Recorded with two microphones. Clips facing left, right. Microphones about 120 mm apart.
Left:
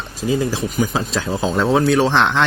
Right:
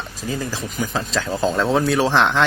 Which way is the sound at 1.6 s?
Centre (ahead or behind).